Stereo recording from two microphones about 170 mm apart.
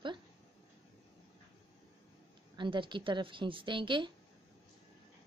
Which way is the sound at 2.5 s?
30° right (ahead or behind).